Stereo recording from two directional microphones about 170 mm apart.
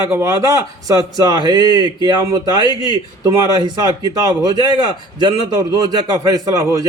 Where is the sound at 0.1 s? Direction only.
15° right (ahead or behind).